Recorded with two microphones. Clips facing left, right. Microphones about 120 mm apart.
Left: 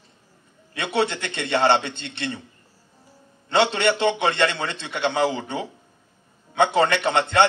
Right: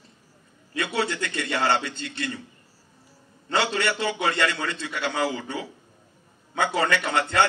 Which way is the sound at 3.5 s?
25° left (ahead or behind).